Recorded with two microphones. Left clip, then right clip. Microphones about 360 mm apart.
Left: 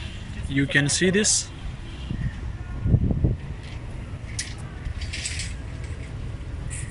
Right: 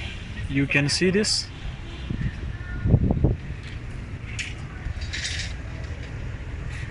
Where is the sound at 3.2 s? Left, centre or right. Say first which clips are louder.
Right 3 dB; right.